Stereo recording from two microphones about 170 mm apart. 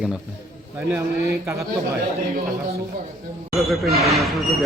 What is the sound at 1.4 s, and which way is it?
Speech, 15° right (ahead or behind).